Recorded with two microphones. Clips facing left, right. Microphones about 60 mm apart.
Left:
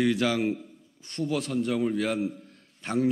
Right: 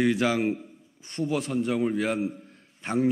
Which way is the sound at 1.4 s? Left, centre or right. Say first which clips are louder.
Right 1 dB; centre.